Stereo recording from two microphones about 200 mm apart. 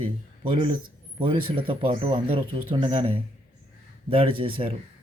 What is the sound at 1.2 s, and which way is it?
Speech, 25° right (ahead or behind).